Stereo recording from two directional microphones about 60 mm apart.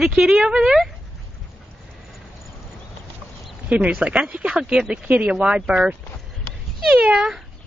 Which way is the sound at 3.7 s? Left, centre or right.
Right.